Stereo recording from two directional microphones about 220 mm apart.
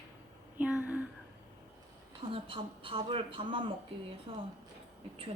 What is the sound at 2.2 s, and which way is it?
Speech, 25° right (ahead or behind).